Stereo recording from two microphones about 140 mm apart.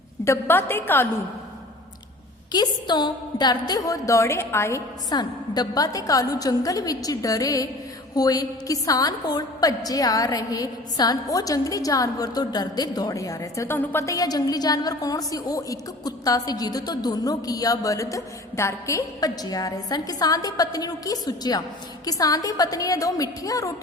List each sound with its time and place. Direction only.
0.3 s a woman's voice: 15° left (ahead or behind)
2.5 s a woman's voice: 30° left (ahead or behind)